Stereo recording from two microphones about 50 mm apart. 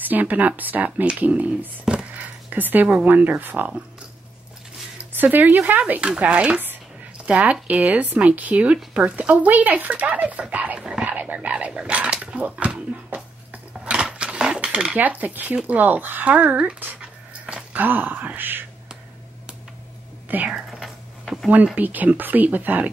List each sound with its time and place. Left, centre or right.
0.0 s speech: right
2.1 s a sound: right
3.1 s speech: right
5.1 s speech: right
5.9 s speech: right
10.8 s a sound: centre
11.1 s speech: right
13.8 s dishes: centre
15.0 s speech: right
17.0 s a sound: centre
17.7 s speech: right
20.4 s speech: centre
20.8 s a sound: centre
21.7 s speech: right